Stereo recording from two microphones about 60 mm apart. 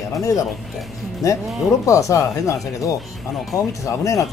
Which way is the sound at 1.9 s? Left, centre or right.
Left.